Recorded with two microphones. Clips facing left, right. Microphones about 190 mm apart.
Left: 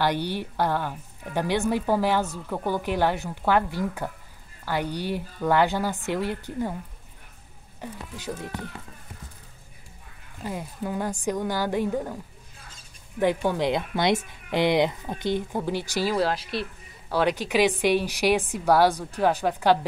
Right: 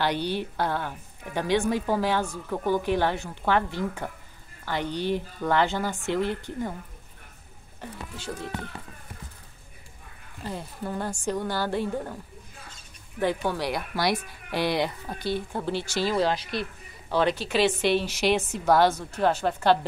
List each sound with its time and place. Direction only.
0.0 s speech: 10° left (ahead or behind)
10.4 s speech: 10° left (ahead or behind)
13.2 s speech: 15° left (ahead or behind)